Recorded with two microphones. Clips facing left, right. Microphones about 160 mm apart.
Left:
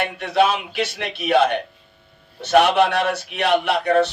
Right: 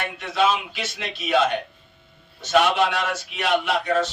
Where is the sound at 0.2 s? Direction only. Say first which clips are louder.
Left 2 dB; 65° left (ahead or behind).